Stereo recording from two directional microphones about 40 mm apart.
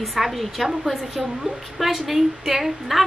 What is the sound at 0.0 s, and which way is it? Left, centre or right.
A woman's voice, centre.